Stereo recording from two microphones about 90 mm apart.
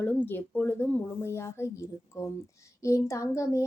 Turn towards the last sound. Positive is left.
turn(degrees=35)  # may be behind; listen again after turning